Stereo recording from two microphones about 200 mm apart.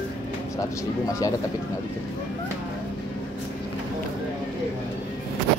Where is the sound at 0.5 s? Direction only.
15° left (ahead or behind).